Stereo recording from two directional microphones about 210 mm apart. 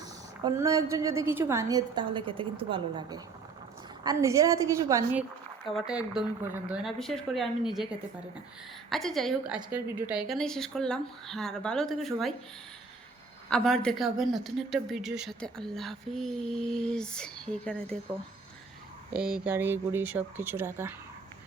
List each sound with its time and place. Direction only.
0.0 s a woman's voice: 15° right (ahead or behind)
5.6 s a woman's voice: centre (ahead or behind)
8.9 s a woman's voice: centre (ahead or behind)
13.5 s a woman's voice: 5° left (ahead or behind)
19.1 s a woman's voice: 5° right (ahead or behind)